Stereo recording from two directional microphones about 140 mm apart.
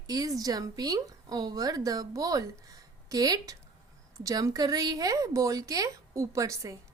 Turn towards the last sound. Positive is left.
turn(degrees=-25)  # may be behind; listen again after turning